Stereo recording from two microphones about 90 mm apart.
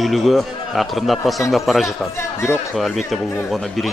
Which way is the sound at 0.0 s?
Centre (ahead or behind).